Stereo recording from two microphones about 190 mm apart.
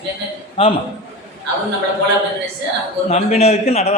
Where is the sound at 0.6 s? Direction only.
30° left (ahead or behind).